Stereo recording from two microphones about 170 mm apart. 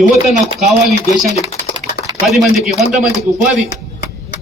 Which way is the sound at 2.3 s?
Centre (ahead or behind).